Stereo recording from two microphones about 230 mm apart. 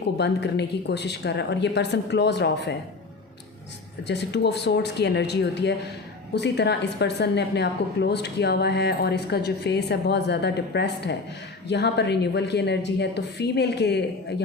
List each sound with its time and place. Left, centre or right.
0.2 s a woman's voice: left
4.0 s a woman's voice: left